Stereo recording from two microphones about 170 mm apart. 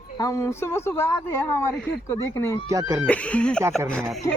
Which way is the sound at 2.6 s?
20° right (ahead or behind).